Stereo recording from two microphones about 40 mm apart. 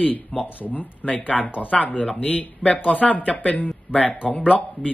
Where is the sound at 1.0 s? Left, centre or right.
Left.